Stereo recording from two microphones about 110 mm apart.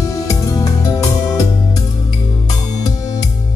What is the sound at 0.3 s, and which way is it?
Music, 30° left (ahead or behind).